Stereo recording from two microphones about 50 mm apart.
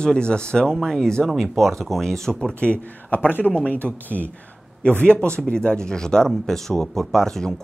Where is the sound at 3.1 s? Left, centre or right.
Left; by 7.5 s centre.